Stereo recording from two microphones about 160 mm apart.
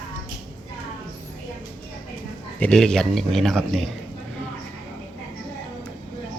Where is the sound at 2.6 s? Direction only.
5° left (ahead or behind).